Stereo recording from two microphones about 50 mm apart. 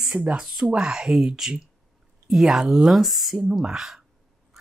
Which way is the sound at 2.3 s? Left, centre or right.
Centre.